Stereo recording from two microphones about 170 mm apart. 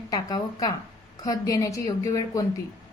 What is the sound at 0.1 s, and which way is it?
A woman's voice, 25° left (ahead or behind).